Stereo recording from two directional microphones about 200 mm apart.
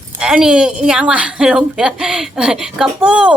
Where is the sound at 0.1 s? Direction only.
5° right (ahead or behind).